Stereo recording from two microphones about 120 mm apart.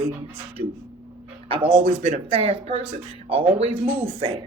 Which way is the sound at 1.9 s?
60° right (ahead or behind).